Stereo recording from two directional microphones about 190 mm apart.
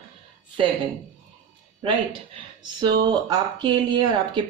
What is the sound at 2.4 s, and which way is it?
Speech, 25° right (ahead or behind).